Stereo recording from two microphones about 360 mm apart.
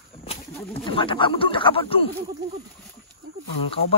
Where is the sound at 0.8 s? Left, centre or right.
Centre.